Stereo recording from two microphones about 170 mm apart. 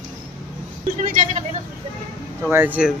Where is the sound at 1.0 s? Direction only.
45° right (ahead or behind).